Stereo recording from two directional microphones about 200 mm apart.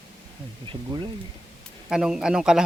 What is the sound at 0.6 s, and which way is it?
Speech, 25° right (ahead or behind).